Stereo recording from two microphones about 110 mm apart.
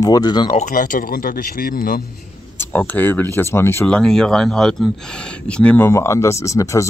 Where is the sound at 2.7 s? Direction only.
15° left (ahead or behind).